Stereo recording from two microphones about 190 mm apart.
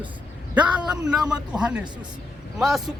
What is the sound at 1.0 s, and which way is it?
Speech, 5° right (ahead or behind).